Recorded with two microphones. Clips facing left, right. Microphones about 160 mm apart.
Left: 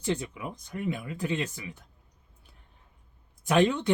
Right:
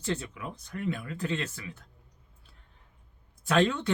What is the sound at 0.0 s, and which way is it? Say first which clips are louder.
Speech: left 3 dB; 15° left (ahead or behind).